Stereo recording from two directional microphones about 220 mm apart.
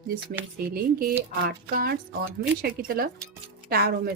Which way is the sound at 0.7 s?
40° right (ahead or behind).